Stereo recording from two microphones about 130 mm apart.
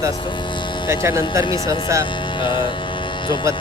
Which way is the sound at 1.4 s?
35° left (ahead or behind).